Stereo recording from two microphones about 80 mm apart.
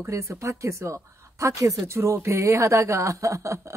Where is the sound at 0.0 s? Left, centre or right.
Right.